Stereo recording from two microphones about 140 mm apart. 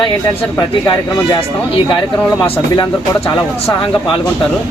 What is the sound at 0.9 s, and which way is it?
Speech, 35° left (ahead or behind).